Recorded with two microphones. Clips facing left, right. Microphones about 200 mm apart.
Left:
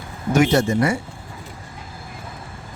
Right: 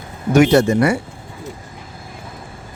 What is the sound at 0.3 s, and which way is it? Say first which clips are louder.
Speech: right 5 dB; 70° right (ahead or behind).